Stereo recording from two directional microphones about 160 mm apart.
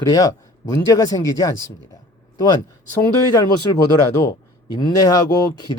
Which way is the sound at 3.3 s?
25° left (ahead or behind).